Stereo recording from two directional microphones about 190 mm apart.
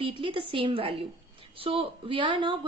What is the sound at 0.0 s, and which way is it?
A woman's voice, 25° right (ahead or behind).